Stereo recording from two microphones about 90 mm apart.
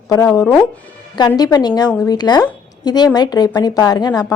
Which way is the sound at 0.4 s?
20° left (ahead or behind).